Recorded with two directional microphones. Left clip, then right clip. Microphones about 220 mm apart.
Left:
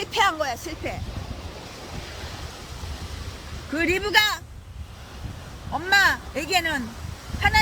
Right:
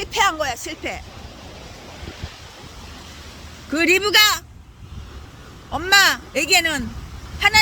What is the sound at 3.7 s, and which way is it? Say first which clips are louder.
Speech: right 5 dB; 45° right (ahead or behind).